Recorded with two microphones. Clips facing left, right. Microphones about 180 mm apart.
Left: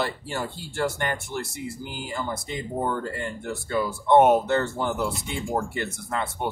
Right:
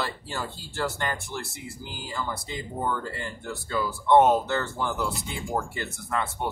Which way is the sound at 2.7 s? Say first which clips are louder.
Left 2 dB; 30° left (ahead or behind).